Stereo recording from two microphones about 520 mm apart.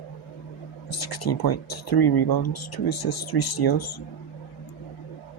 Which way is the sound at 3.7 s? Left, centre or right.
Left.